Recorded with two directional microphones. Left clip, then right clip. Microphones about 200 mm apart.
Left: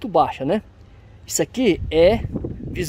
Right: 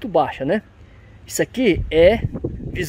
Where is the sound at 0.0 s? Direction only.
Centre (ahead or behind).